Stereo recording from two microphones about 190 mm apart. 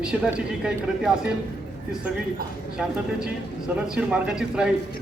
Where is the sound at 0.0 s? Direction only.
5° right (ahead or behind).